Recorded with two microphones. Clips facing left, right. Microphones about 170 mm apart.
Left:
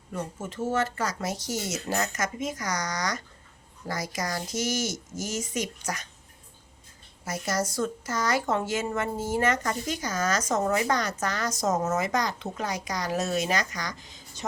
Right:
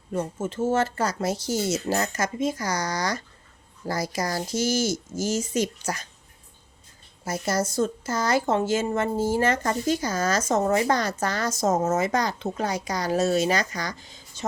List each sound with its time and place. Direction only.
0.1 s speech: 25° right (ahead or behind)
7.3 s speech: 30° right (ahead or behind)